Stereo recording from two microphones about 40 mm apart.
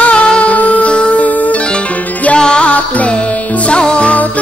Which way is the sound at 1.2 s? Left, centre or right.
Left.